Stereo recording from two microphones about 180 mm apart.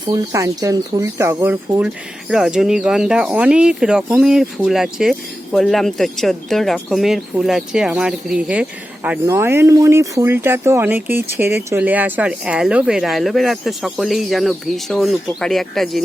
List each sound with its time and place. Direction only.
0.1 s speech: 15° right (ahead or behind)
2.3 s speech: centre (ahead or behind)